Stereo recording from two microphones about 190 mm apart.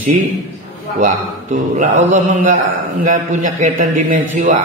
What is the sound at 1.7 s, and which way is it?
Mantra, 40° right (ahead or behind).